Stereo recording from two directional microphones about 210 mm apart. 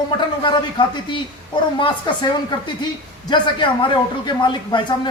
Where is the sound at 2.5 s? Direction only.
20° left (ahead or behind).